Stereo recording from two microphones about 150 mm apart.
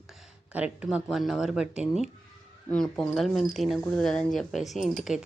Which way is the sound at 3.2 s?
Centre (ahead or behind).